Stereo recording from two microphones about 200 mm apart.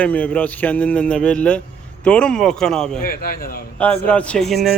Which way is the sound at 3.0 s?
50° left (ahead or behind).